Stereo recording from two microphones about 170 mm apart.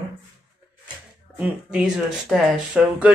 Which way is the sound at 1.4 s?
5° right (ahead or behind).